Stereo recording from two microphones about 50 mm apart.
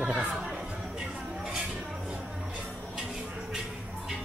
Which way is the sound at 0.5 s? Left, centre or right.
Centre.